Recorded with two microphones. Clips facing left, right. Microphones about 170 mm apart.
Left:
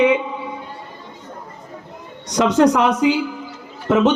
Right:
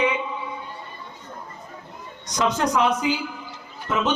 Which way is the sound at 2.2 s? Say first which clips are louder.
Left 9 dB; 70° left (ahead or behind).